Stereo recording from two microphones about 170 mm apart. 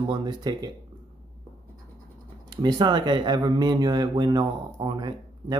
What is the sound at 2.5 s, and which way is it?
Speech, 25° right (ahead or behind).